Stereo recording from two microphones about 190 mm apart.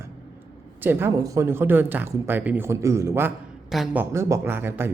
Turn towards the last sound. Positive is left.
turn(degrees=-10)  # may be behind; listen again after turning